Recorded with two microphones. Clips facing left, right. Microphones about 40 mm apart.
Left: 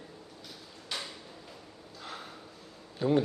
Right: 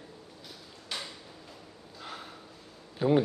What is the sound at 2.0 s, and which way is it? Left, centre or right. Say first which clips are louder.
Snort: even; centre.